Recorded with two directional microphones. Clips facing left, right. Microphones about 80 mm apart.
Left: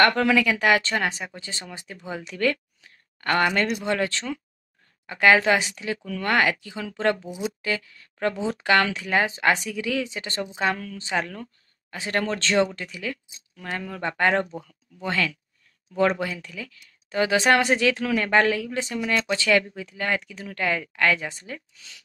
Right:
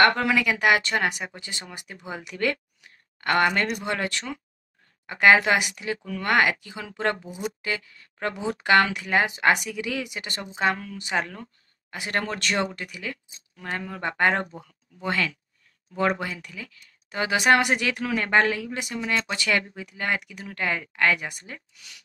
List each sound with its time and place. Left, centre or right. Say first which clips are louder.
0.0 s speech: left 1 dB; right
7.2 s speech: left 2 dB; right
7.6 s a woman's voice: left 2 dB; right